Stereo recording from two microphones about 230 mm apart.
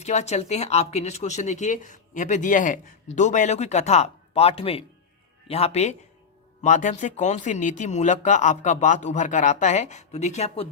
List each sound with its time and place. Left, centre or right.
0.0 s speech: left